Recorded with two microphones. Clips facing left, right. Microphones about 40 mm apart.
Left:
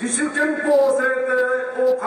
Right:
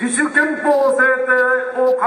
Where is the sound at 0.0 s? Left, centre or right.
Centre.